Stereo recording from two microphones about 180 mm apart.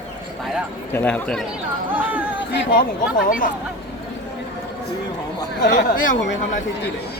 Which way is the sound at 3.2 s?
50° left (ahead or behind).